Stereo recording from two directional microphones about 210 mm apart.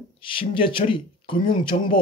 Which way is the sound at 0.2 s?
25° left (ahead or behind).